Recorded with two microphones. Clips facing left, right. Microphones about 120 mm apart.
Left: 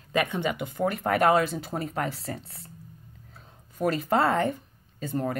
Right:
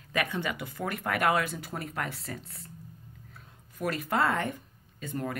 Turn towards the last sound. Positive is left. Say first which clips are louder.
# left 5 dB
turn(degrees=30)  # may be behind; listen again after turning